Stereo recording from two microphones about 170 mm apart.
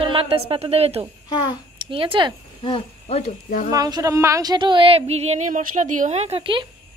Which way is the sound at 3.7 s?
20° right (ahead or behind).